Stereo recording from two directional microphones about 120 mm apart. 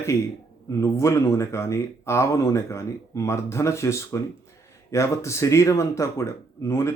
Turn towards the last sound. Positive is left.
turn(degrees=25)  # may be behind; listen again after turning